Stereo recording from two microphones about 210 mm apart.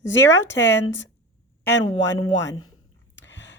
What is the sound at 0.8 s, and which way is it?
Speech, 65° left (ahead or behind).